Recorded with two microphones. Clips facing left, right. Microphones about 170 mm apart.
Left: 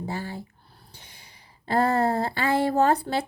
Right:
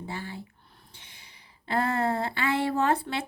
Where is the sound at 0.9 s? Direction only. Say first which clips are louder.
Left 3 dB; 40° left (ahead or behind).